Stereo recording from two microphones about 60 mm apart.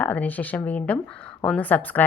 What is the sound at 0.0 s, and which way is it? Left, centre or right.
A woman's voice, left.